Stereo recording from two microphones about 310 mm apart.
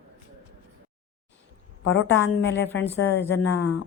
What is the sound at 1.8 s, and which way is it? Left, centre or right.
A woman's voice, left.